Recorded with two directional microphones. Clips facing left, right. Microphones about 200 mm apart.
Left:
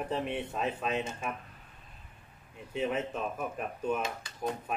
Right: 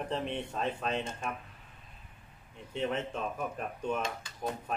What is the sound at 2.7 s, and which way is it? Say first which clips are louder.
Speech: left 1 dB; 5° left (ahead or behind).